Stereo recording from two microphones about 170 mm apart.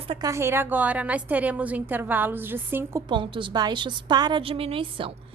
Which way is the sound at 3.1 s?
30° right (ahead or behind).